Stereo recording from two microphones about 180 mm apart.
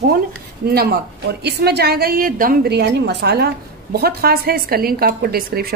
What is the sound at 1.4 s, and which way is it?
A woman's voice, 65° right (ahead or behind).